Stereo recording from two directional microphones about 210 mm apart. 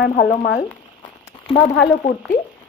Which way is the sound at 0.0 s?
40° left (ahead or behind).